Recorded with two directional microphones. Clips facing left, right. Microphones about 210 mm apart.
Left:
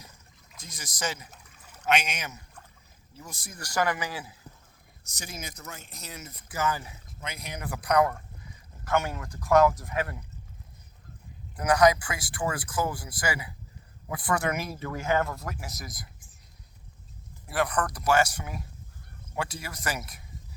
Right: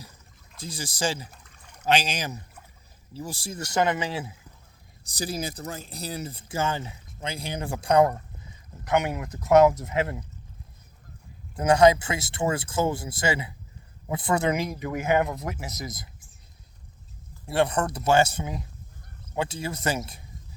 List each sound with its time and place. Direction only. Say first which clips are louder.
0.6 s speech: right 6 dB; 30° right (ahead or behind)
1.5 s a sound: right 1 dB; 5° left (ahead or behind)
1.8 s speech: right 3 dB; 30° right (ahead or behind)
11.5 s speech: right 4 dB; 25° right (ahead or behind)
17.4 s speech: right 4 dB; 25° right (ahead or behind)